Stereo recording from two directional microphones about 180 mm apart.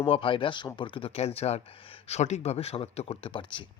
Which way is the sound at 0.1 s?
30° left (ahead or behind).